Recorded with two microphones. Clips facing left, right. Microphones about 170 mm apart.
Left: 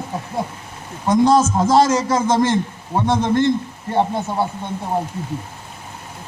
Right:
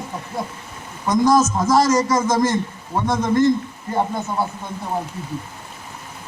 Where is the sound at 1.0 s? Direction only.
30° left (ahead or behind).